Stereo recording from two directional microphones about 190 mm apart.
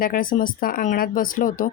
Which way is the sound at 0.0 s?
50° left (ahead or behind).